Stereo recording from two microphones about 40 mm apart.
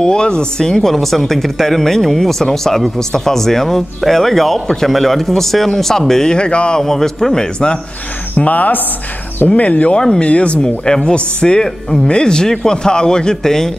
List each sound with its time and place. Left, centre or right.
0.0 s speech: left
6.3 s speech: left
6.8 s speech: centre
8.4 s speech: left
9.9 s speech: centre
10.3 s speech: left
10.6 s speech: centre